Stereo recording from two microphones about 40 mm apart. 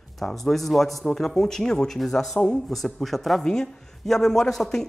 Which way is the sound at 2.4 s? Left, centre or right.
Left.